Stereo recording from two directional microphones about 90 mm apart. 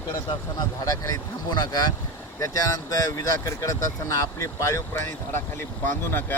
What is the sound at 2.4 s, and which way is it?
Speech, 40° left (ahead or behind).